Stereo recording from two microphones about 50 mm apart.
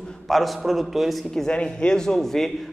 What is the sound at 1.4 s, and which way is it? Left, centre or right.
A man's voice, centre.